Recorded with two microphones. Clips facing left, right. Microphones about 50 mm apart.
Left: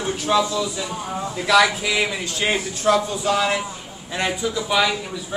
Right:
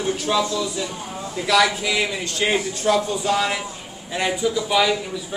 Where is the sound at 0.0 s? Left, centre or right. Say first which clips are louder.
Left 1 dB; centre.